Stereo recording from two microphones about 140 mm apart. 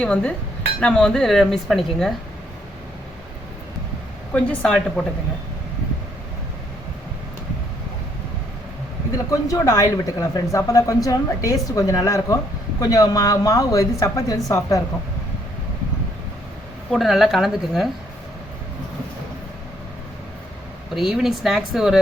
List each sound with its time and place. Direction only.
0.0 s speech: 10° left (ahead or behind)
4.4 s speech: 5° left (ahead or behind)
9.1 s speech: 25° left (ahead or behind)
16.9 s speech: centre (ahead or behind)
20.9 s speech: centre (ahead or behind)